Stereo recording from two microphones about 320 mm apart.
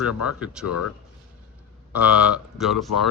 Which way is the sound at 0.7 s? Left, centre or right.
Left.